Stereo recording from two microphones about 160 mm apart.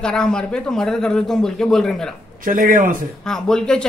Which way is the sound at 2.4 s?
60° right (ahead or behind).